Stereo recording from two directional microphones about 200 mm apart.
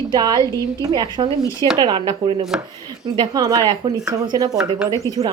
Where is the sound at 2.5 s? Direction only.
5° right (ahead or behind).